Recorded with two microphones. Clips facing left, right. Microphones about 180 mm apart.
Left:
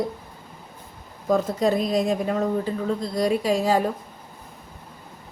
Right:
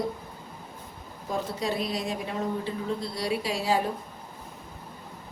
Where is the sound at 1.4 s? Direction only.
45° left (ahead or behind).